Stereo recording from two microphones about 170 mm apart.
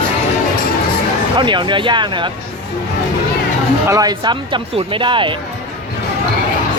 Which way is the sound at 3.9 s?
20° right (ahead or behind).